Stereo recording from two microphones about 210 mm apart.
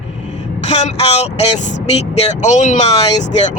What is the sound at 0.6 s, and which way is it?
Speech, 30° left (ahead or behind).